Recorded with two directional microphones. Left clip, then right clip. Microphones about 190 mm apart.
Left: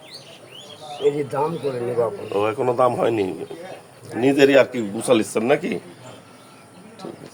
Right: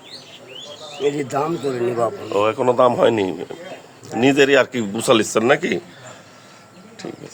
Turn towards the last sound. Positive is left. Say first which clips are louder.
# right 3 dB
turn(degrees=-40)  # may be behind; listen again after turning